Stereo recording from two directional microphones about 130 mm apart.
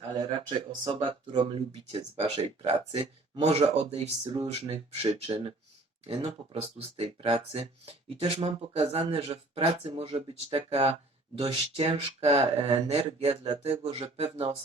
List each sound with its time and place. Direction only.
0.1 s speech: 40° right (ahead or behind); by 4.1 s 55° right (ahead or behind)
4.2 s speech: 40° right (ahead or behind)